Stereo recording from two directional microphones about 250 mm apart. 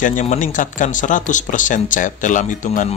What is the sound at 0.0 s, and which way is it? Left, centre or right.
Speech, left.